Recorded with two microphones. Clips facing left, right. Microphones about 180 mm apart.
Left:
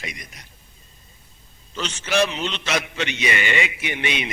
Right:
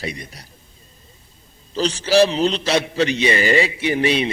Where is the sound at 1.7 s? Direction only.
35° right (ahead or behind).